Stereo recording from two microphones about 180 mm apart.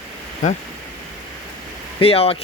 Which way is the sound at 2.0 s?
35° left (ahead or behind).